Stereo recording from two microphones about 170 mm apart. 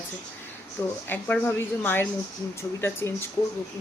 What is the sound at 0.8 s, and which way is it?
Speech, 15° left (ahead or behind).